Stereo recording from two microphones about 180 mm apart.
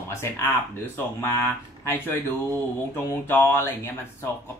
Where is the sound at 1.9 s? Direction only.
10° left (ahead or behind).